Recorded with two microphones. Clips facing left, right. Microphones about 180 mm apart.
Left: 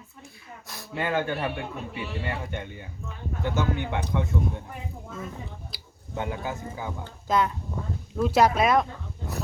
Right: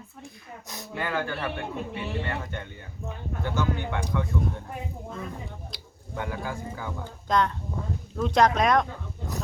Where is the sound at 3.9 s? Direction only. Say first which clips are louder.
Left 1 dB; 20° left (ahead or behind).